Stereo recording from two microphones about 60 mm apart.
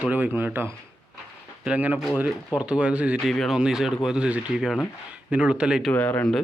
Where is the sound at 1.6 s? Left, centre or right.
Right.